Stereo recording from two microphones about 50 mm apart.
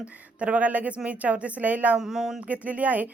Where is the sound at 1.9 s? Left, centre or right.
Centre.